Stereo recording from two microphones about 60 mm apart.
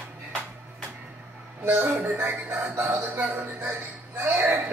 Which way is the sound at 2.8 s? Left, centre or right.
Right.